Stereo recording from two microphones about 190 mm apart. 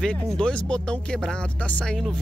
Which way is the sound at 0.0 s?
5° left (ahead or behind).